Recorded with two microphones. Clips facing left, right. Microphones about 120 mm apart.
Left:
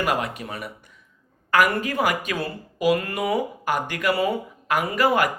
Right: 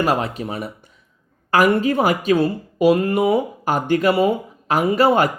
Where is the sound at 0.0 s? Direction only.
30° right (ahead or behind).